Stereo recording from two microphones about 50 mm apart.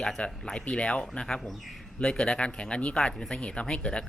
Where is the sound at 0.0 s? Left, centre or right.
Centre.